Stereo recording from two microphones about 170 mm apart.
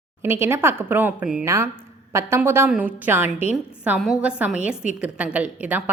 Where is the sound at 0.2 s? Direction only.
15° right (ahead or behind).